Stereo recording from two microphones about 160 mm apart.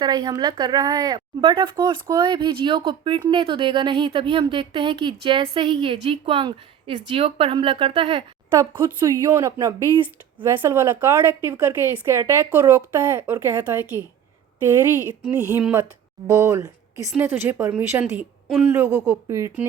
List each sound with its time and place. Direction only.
0.0 s a woman's voice: 25° right (ahead or behind)
9.0 s a woman's voice: 20° right (ahead or behind)